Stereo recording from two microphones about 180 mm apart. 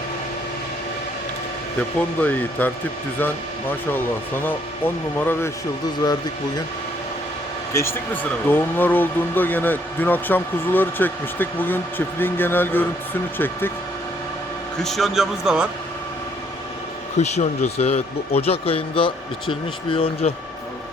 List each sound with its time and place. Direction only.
2.0 s speech: 10° left (ahead or behind)
7.7 s speech: 15° left (ahead or behind)
14.8 s a man's voice: centre (ahead or behind)
17.2 s speech: 40° left (ahead or behind)